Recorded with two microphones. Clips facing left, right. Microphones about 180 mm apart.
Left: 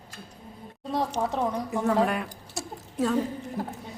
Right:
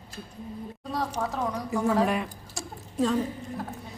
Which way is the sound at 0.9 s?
25° left (ahead or behind).